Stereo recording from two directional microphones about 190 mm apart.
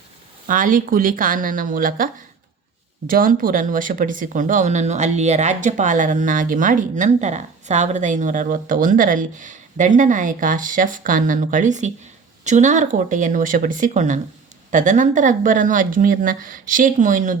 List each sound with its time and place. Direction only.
0.4 s speech: 45° right (ahead or behind)
3.1 s speech: 50° right (ahead or behind)